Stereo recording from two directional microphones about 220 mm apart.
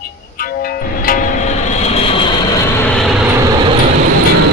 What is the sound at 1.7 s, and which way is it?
Vehicle, 30° left (ahead or behind).